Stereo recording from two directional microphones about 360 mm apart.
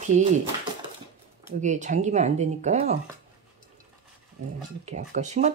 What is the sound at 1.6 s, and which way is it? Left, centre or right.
Speech, centre.